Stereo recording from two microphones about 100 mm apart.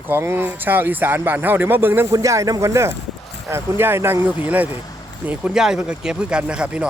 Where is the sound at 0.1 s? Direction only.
25° right (ahead or behind).